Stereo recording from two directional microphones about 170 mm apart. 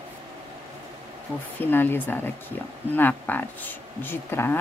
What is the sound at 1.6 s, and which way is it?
Speech, 10° left (ahead or behind).